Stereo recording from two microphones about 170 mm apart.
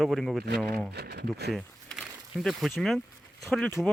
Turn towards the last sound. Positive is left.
turn(degrees=5)  # may be behind; listen again after turning